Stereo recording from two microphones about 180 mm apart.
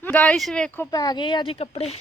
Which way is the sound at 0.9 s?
20° left (ahead or behind).